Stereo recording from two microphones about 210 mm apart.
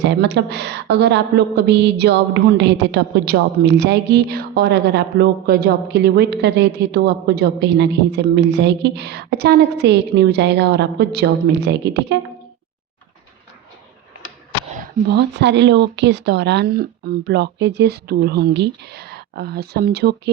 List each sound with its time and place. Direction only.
0.0 s a woman's voice: 55° right (ahead or behind)
14.8 s a woman's voice: 55° right (ahead or behind)